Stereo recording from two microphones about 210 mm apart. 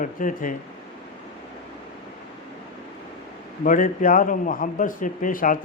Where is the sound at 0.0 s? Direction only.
40° left (ahead or behind).